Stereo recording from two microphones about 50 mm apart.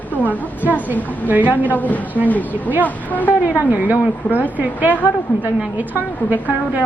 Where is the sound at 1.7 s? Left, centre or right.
Left.